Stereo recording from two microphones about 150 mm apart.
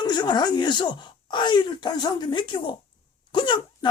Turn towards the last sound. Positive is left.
turn(degrees=30)  # may be behind; listen again after turning